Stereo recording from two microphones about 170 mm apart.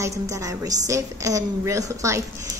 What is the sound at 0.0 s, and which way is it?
A woman's voice, 20° right (ahead or behind).